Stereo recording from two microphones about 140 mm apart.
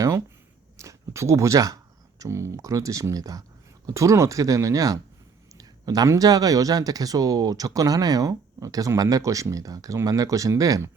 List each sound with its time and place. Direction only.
0.8 s speech: 20° right (ahead or behind)